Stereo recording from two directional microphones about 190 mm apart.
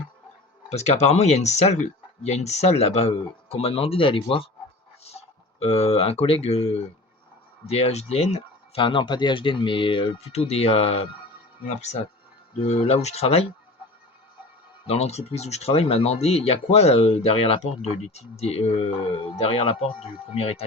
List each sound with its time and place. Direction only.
0.7 s speech: 35° left (ahead or behind)
14.8 s speech: 35° left (ahead or behind)